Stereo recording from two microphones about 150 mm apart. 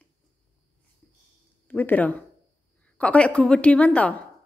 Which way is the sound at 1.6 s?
10° left (ahead or behind).